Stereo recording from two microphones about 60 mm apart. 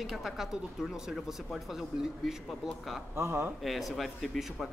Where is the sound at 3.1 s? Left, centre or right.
Right.